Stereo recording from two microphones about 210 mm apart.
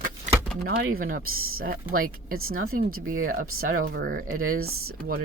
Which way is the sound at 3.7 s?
40° right (ahead or behind).